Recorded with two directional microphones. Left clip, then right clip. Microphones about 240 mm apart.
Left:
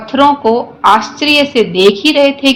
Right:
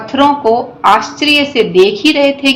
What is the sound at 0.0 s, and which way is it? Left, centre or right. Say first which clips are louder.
A woman's voice: left 1 dB; left.